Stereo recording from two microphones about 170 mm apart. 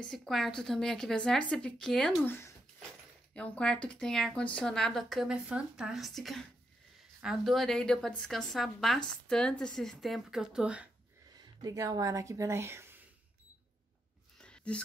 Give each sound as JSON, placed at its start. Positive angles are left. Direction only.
{"t": 0.0, "sound": "a woman's voice", "side_deg": 5}
{"t": 11.6, "sound": "speech", "side_deg": -20}
{"t": 14.4, "sound": "a sound", "side_deg": 5}